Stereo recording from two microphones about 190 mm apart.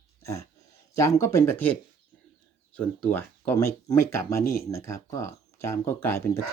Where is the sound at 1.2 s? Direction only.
15° left (ahead or behind).